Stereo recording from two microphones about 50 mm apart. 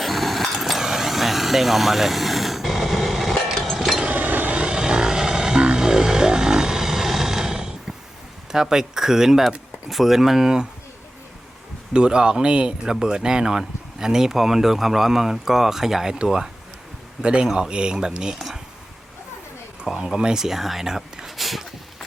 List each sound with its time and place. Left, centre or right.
0.0 s vehicle: centre
3.8 s a sound: centre
4.0 s vehicle: right
4.6 s vehicle: centre
8.5 s speech: centre
11.9 s speech: centre
18.3 s speech: centre
20.0 s speech: centre